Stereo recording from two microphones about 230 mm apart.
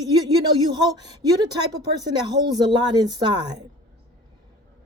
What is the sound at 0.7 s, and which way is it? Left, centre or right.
Speech, centre.